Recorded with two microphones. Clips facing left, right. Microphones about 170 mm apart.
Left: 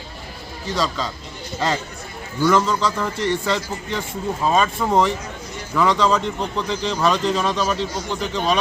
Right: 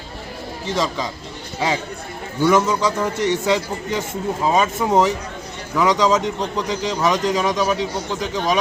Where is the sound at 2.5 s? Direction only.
15° right (ahead or behind).